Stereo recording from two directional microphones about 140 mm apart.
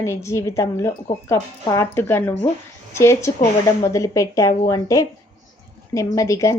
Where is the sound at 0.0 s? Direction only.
20° left (ahead or behind).